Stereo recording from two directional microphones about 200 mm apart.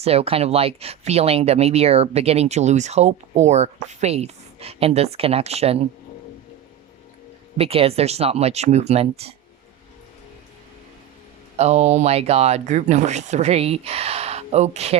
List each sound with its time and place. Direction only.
0.0 s speech: 30° right (ahead or behind)
7.6 s speech: 30° right (ahead or behind)
11.5 s speech: 35° right (ahead or behind)